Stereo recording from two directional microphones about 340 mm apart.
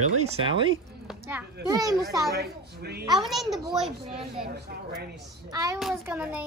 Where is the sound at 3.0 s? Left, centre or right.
Centre.